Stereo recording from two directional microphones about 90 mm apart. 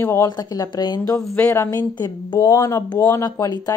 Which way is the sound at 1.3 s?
20° left (ahead or behind).